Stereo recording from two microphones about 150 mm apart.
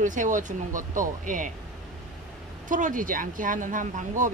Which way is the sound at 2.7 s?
60° right (ahead or behind).